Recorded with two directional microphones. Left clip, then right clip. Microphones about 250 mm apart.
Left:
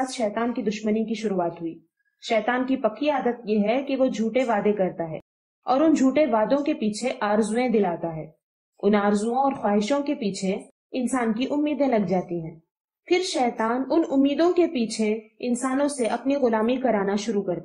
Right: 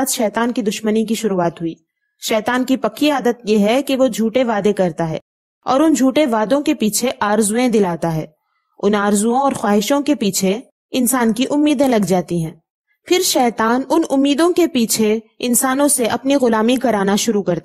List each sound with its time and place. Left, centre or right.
0.0 s a woman's voice: right